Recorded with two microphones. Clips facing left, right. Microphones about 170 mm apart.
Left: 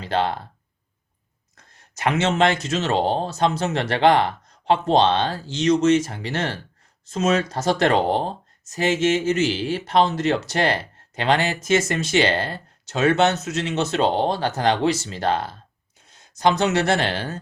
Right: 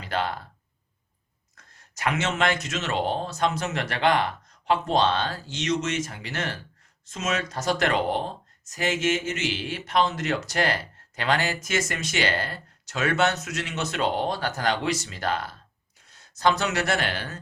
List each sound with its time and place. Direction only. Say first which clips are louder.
0.0 s speech: left 6 dB; 25° left (ahead or behind)
2.0 s speech: left 6 dB; 30° left (ahead or behind)